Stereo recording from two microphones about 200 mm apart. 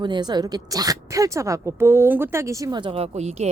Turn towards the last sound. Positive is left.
turn(degrees=-35)  # may be behind; listen again after turning